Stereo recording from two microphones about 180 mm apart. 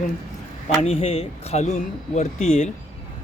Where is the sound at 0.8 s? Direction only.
35° left (ahead or behind).